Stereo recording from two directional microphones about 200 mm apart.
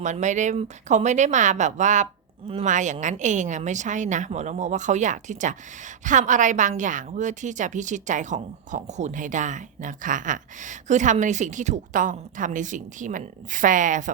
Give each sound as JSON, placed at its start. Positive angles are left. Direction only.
{"t": 0.0, "sound": "a woman's voice", "side_deg": -35}